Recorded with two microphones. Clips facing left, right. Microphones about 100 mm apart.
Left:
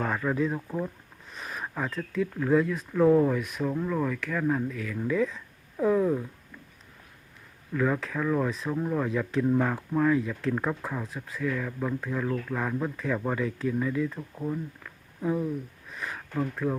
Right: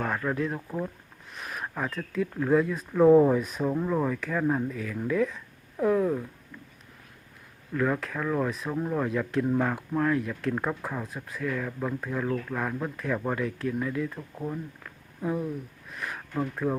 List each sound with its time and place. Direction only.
0.0 s speech: centre (ahead or behind); by 3.6 s 25° right (ahead or behind)
3.6 s speech: 15° right (ahead or behind); by 6.2 s centre (ahead or behind)
7.7 s speech: centre (ahead or behind)
15.9 s a sound: 5° right (ahead or behind)
16.3 s speech: 10° right (ahead or behind)